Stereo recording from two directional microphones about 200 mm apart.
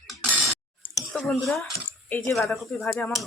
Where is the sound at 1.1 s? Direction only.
Centre (ahead or behind).